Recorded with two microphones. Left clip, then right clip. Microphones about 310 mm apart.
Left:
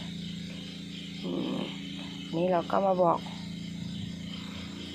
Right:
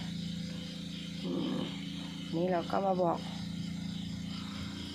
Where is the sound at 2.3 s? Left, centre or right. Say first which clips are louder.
Left 5 dB; centre.